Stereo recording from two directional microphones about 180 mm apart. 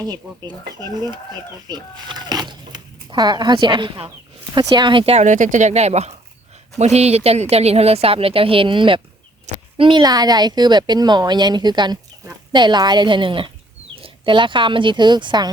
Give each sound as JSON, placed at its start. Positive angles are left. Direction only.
{"t": 0.0, "sound": "speech", "side_deg": -20}